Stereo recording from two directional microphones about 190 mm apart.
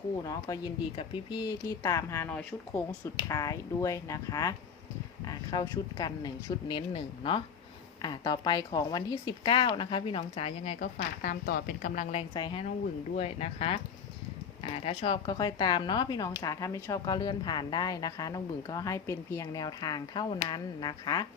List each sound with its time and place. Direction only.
0.2 s speech: 20° left (ahead or behind); by 12.2 s 40° left (ahead or behind)
12.3 s speech: 25° left (ahead or behind)